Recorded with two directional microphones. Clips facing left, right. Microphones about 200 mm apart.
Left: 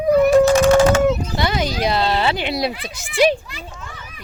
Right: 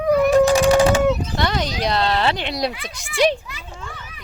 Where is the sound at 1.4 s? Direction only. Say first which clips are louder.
Left 2 dB; 5° left (ahead or behind).